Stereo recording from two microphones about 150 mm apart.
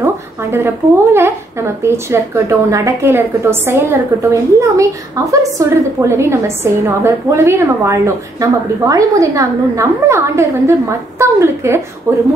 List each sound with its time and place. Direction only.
0.0 s a woman's voice: 15° right (ahead or behind)